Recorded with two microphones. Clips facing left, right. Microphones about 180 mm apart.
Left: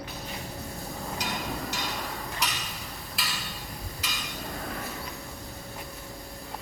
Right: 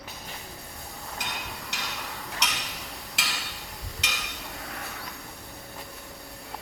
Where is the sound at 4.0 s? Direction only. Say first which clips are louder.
Right 3 dB; 75° right (ahead or behind).